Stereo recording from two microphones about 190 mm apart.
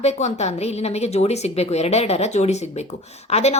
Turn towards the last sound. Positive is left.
turn(degrees=35)  # may be behind; listen again after turning